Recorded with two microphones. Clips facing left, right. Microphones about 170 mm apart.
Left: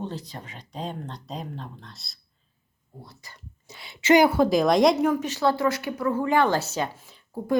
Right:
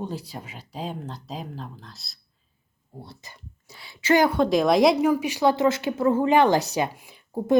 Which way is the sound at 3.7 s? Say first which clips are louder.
Left 2 dB; 20° left (ahead or behind).